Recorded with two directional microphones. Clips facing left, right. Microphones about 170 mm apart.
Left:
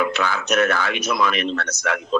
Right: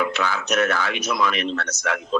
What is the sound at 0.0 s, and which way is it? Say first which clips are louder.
Speech: left 2 dB; 60° left (ahead or behind).